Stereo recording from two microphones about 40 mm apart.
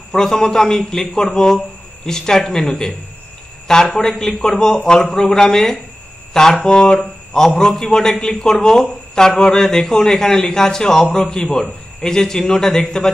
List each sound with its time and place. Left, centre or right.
0.1 s a man's voice: centre